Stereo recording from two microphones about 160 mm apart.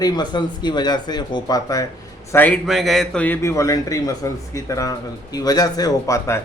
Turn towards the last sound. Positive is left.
turn(degrees=20)  # may be behind; listen again after turning